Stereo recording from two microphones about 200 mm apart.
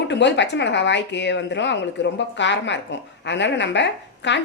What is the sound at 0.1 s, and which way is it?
Speech, 60° left (ahead or behind).